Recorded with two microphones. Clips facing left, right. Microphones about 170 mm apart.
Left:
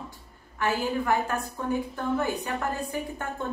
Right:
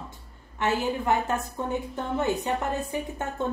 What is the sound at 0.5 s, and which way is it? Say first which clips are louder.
A woman's voice: right 1 dB; 20° right (ahead or behind).